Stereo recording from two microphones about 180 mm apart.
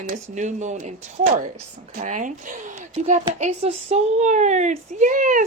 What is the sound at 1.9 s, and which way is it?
Speech, 45° right (ahead or behind).